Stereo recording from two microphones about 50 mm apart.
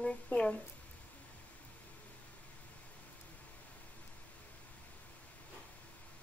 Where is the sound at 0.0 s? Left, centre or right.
Left.